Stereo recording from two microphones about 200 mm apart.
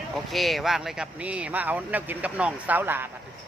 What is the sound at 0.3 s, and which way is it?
Speech, centre (ahead or behind).